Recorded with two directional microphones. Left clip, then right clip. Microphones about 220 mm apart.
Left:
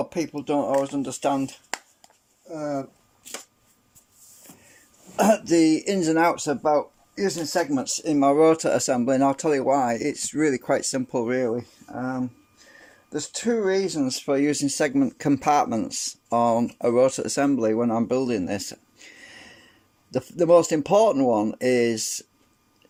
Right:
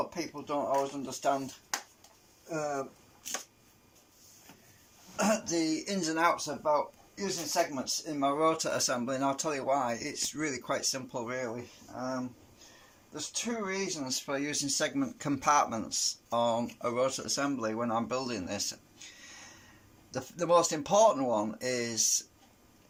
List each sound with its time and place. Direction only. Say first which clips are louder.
0.1 s speech: left 9 dB; 45° left (ahead or behind)
5.1 s speech: left 11 dB; 35° left (ahead or behind)
13.1 s speech: left 11 dB; 45° left (ahead or behind)